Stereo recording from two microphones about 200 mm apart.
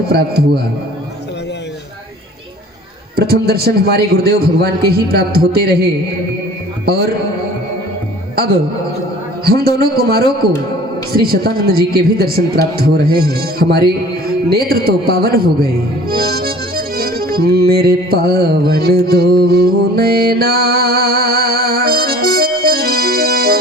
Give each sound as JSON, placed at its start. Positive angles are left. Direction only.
{"t": 0.1, "sound": "a man's voice", "side_deg": -50}
{"t": 3.2, "sound": "a man's voice", "side_deg": -50}
{"t": 9.4, "sound": "a man's voice", "side_deg": -50}